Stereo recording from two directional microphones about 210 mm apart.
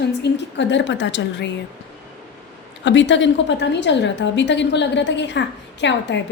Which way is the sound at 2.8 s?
60° left (ahead or behind).